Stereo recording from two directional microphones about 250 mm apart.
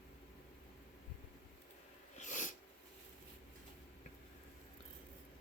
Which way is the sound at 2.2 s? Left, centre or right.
Left.